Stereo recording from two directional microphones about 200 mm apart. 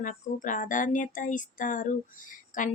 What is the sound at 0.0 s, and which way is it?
Speech, 40° left (ahead or behind).